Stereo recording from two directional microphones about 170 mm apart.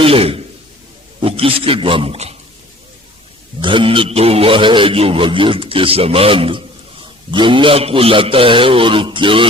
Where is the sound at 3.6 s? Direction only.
30° right (ahead or behind).